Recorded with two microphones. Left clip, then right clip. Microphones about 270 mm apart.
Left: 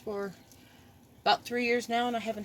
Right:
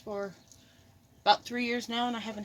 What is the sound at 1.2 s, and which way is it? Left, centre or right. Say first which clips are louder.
Speech: even; right.